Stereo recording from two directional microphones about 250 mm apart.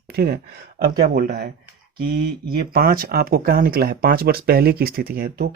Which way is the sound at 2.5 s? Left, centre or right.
Right.